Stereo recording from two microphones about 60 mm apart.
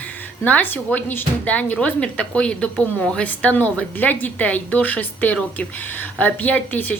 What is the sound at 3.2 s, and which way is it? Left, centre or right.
Speech, left.